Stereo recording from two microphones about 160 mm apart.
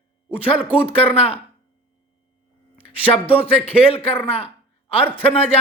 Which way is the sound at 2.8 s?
35° left (ahead or behind).